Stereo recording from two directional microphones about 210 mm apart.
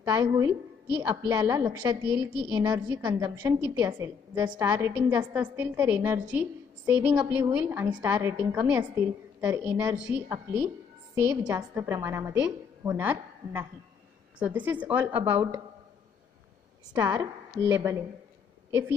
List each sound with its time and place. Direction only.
0.0 s a woman's voice: 20° right (ahead or behind)
16.9 s a woman's voice: 20° right (ahead or behind)